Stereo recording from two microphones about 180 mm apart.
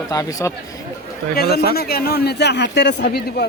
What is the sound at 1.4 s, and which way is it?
A man's voice, 60° left (ahead or behind).